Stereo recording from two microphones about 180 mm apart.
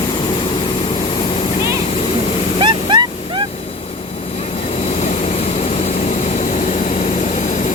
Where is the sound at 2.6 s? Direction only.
25° right (ahead or behind).